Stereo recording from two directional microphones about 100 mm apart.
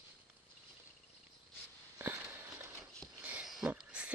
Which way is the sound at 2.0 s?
20° right (ahead or behind).